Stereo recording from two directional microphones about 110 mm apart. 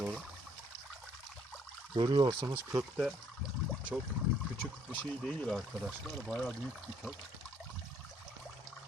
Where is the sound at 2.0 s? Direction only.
40° right (ahead or behind).